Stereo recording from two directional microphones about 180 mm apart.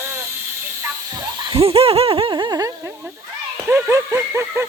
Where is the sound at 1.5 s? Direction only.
35° right (ahead or behind).